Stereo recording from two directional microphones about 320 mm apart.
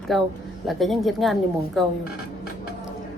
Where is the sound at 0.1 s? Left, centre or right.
Centre.